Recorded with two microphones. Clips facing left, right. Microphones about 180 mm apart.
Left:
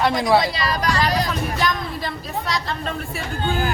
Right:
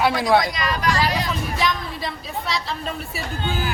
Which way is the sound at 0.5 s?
35° left (ahead or behind).